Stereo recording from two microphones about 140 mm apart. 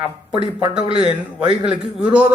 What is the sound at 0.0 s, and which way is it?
Speech, 40° left (ahead or behind).